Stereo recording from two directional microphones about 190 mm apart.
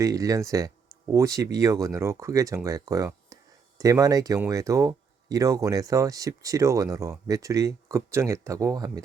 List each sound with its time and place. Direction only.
0.0 s speech: 15° right (ahead or behind)